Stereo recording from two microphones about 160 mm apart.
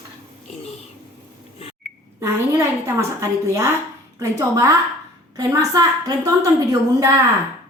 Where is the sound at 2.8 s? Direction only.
20° right (ahead or behind).